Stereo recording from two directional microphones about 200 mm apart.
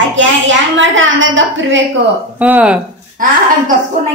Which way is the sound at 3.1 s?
40° right (ahead or behind).